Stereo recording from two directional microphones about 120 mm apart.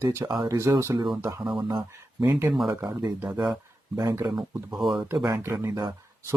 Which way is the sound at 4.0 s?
25° right (ahead or behind).